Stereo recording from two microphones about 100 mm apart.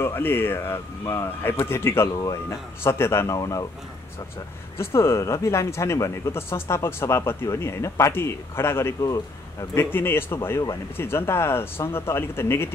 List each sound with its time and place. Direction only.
0.0 s speech: 25° left (ahead or behind)
4.7 s a man's voice: 25° left (ahead or behind)
9.8 s speech: 20° left (ahead or behind)